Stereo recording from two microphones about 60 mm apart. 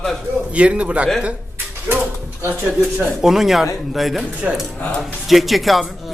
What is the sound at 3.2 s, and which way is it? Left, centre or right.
Speech, centre.